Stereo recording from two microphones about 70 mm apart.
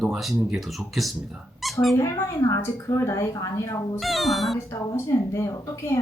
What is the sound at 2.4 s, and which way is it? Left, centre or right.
Speech, left.